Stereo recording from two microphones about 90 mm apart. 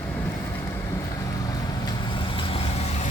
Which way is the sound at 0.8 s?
45° left (ahead or behind).